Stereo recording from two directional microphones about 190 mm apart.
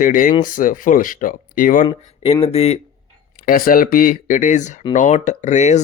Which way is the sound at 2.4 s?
30° left (ahead or behind).